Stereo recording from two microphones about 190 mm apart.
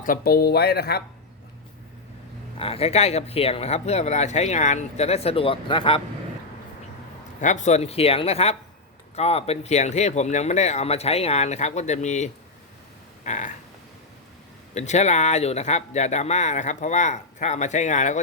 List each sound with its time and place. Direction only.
0.0 s speech: 50° left (ahead or behind)
2.6 s speech: 30° left (ahead or behind)
7.4 s speech: 40° left (ahead or behind)
13.2 s a sound: 40° left (ahead or behind)
14.8 s speech: 35° left (ahead or behind)